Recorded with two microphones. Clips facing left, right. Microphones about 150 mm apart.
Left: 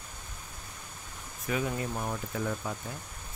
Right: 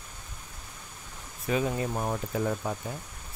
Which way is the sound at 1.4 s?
25° right (ahead or behind).